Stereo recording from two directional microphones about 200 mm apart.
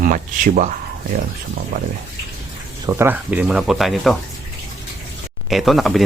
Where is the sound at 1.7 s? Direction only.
40° right (ahead or behind).